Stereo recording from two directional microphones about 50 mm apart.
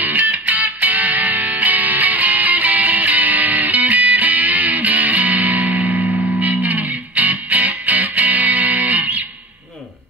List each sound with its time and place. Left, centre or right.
0.0 s music: right